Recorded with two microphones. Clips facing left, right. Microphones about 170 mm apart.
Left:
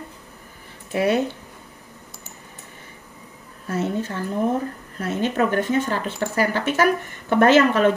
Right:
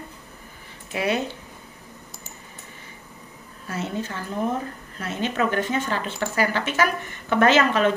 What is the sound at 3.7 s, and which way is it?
A woman's voice, 50° left (ahead or behind).